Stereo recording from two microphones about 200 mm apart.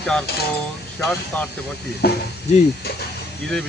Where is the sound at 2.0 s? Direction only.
55° left (ahead or behind).